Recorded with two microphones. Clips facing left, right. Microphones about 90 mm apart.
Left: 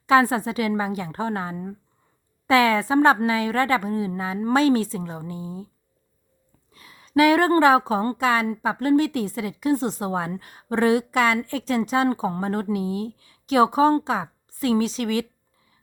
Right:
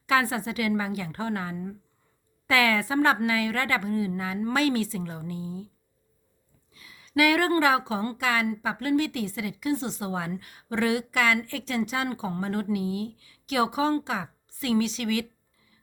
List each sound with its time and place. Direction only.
0.1 s a woman's voice: 35° left (ahead or behind)
6.7 s a woman's voice: 40° left (ahead or behind)